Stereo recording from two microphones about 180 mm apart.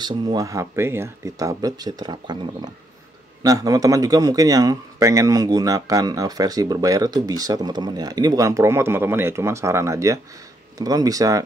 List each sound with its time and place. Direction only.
0.0 s a man's voice: 25° right (ahead or behind)